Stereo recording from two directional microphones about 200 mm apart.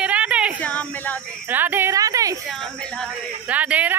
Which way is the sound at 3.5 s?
5° right (ahead or behind).